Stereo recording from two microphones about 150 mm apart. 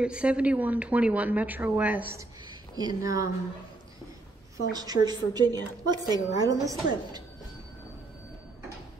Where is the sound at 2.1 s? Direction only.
25° right (ahead or behind).